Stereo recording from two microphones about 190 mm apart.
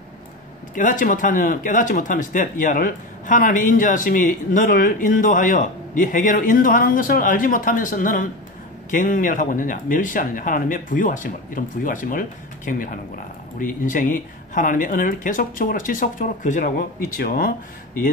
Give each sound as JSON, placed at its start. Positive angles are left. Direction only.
{"t": 0.7, "sound": "speech", "side_deg": 45}